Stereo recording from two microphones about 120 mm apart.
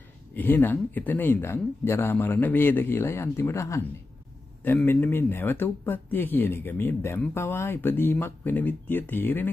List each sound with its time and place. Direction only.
0.3 s speech: 15° left (ahead or behind)
4.8 s speech: 15° left (ahead or behind)